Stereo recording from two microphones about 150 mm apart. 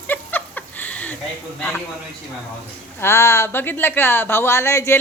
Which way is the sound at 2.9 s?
15° left (ahead or behind).